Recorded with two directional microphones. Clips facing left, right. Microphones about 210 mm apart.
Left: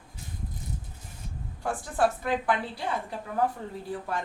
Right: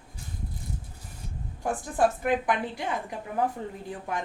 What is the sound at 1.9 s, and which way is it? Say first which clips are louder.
A woman's voice: right 2 dB; 15° right (ahead or behind).